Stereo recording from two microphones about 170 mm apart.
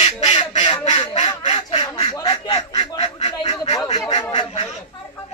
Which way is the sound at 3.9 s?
20° left (ahead or behind).